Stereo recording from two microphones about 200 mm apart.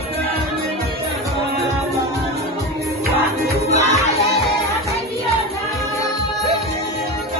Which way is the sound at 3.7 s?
35° left (ahead or behind).